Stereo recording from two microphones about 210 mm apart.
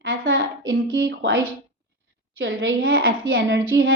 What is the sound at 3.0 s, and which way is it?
Speech, 45° right (ahead or behind).